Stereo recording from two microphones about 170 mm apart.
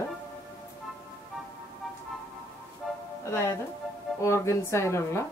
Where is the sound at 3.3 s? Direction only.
15° left (ahead or behind).